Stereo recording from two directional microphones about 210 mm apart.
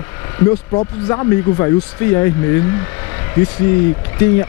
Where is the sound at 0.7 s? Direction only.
20° left (ahead or behind).